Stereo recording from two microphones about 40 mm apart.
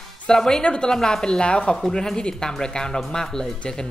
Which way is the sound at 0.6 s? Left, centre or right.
Left.